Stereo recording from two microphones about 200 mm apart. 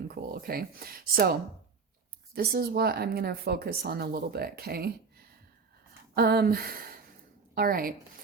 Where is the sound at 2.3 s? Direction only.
55° right (ahead or behind).